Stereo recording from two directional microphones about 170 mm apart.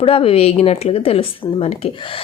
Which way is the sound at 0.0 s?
35° left (ahead or behind).